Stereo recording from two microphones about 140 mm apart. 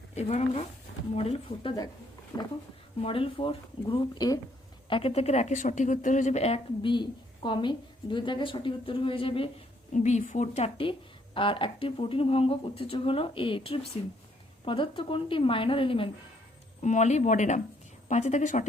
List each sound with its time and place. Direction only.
0.2 s speech: 50° left (ahead or behind)
2.3 s speech: 25° left (ahead or behind)
3.0 s speech: 40° left (ahead or behind)
4.9 s speech: 40° left (ahead or behind)
9.9 s a woman's voice: 60° left (ahead or behind); by 16.0 s 40° left (ahead or behind)
16.8 s a woman's voice: 55° left (ahead or behind)